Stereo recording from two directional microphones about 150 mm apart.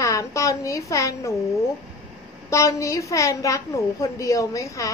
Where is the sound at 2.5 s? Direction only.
20° left (ahead or behind).